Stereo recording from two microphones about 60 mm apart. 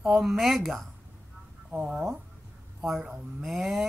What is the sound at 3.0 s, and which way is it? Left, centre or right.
Speech, right.